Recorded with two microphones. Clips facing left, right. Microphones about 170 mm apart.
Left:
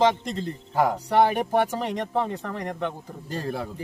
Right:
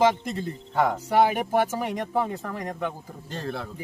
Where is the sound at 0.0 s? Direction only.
10° right (ahead or behind).